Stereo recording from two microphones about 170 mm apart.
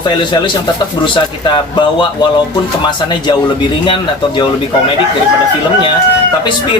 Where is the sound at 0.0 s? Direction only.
25° left (ahead or behind).